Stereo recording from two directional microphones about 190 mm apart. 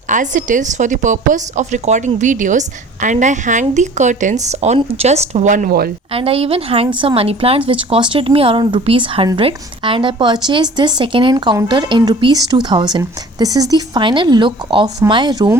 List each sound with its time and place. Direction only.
0.1 s speech: 40° right (ahead or behind)
6.1 s speech: 30° right (ahead or behind)